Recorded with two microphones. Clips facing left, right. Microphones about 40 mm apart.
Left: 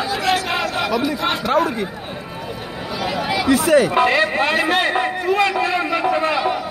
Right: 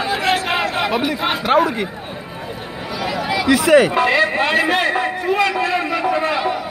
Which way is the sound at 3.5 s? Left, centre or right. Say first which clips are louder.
Right 3 dB; right.